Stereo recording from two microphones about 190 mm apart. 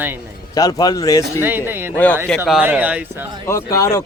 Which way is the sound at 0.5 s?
20° left (ahead or behind).